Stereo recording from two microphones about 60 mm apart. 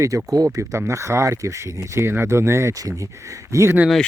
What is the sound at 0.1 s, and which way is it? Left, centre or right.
Speech, right.